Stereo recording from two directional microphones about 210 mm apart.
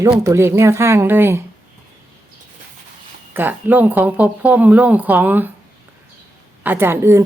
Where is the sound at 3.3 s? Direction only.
10° right (ahead or behind).